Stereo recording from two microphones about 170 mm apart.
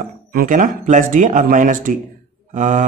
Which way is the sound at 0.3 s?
55° right (ahead or behind).